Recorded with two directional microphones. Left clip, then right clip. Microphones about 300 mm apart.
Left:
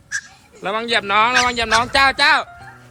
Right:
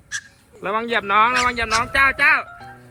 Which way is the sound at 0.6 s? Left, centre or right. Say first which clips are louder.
Left 2 dB; centre.